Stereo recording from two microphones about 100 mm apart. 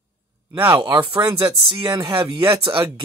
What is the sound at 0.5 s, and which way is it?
Speech, 25° right (ahead or behind).